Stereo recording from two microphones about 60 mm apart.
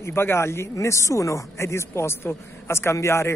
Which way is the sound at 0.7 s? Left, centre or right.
Left.